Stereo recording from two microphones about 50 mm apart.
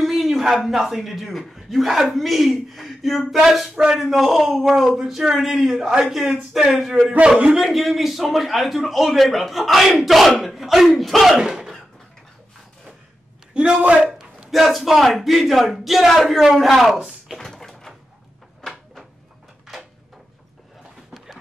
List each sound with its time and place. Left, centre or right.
0.0 s a man's voice: centre
3.7 s speech: centre
4.0 s a man's voice: centre
7.2 s a man's voice: centre
7.6 s a man's voice: centre
13.5 s a man's voice: right
14.1 s a man's voice: centre
17.4 s cupboard open or close: centre
18.6 s a sound: centre